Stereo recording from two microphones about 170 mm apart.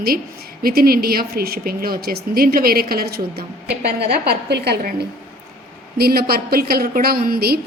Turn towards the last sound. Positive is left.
turn(degrees=-65)  # may be behind; listen again after turning